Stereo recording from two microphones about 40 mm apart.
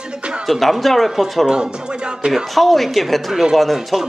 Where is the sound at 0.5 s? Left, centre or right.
Centre.